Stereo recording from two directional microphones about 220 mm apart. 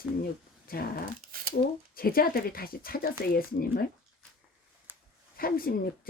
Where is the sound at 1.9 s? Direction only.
40° left (ahead or behind).